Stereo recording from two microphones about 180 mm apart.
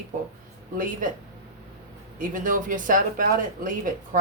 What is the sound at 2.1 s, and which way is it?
Speech, 50° right (ahead or behind).